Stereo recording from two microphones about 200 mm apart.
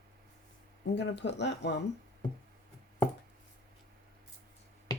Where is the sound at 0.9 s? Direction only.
60° left (ahead or behind).